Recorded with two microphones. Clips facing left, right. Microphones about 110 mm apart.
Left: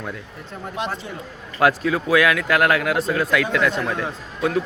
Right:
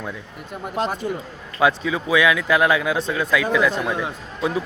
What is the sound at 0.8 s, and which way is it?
Speech, 40° right (ahead or behind).